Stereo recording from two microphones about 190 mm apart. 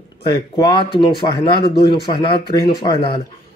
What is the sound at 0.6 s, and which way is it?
Speech, 25° left (ahead or behind).